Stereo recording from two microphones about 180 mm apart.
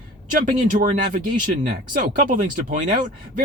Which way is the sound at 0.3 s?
45° right (ahead or behind).